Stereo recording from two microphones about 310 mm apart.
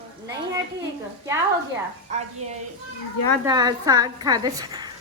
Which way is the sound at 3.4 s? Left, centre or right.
Centre.